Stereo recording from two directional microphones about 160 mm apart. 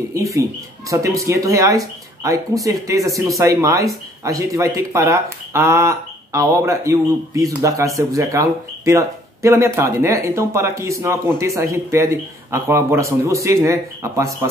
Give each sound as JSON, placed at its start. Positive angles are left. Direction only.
{"t": 0.1, "sound": "speech", "side_deg": -20}